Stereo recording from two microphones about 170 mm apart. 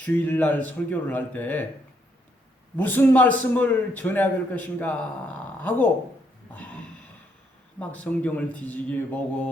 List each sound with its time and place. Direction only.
0.0 s a man's voice: 10° left (ahead or behind)
2.7 s a man's voice: 10° left (ahead or behind)
7.8 s a man's voice: 10° left (ahead or behind)